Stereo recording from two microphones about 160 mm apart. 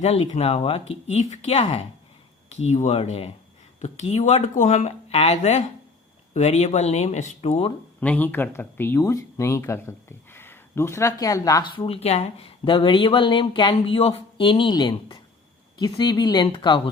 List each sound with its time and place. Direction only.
0.0 s speech: 40° left (ahead or behind)
8.0 s speech: 10° left (ahead or behind); by 16.9 s 30° left (ahead or behind)